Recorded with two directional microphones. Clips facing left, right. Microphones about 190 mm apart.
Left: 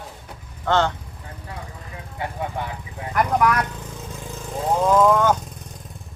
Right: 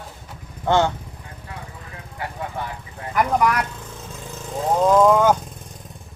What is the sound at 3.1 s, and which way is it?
Speech, centre (ahead or behind).